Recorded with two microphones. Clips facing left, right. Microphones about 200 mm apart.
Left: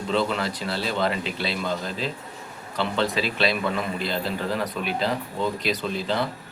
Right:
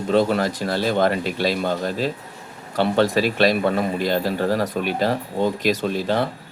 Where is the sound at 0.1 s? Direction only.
45° right (ahead or behind).